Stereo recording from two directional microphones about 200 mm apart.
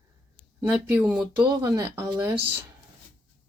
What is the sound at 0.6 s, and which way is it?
Speech, centre (ahead or behind).